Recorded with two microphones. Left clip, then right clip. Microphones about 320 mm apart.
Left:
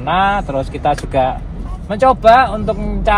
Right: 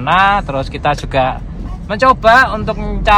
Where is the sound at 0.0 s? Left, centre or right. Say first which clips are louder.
Right 3 dB; right.